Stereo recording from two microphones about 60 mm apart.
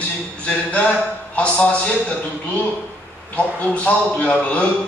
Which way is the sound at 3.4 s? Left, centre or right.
Left.